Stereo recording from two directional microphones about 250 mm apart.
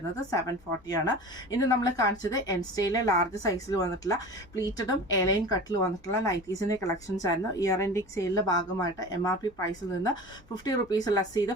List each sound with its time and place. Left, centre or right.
0.3 s a woman's voice: centre
10.5 s a woman's voice: centre